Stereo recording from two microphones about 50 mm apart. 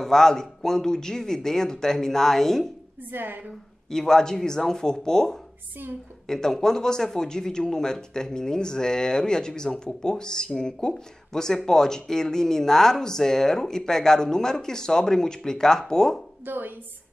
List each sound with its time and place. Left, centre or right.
0.0 s speech: centre
3.1 s a woman's voice: right
3.9 s speech: centre
16.4 s a woman's voice: right